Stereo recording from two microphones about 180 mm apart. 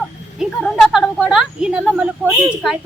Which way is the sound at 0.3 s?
5° right (ahead or behind).